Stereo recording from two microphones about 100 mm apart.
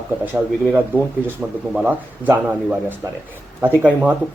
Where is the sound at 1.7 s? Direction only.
15° right (ahead or behind).